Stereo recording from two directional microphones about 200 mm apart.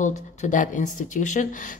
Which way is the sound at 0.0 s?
35° left (ahead or behind).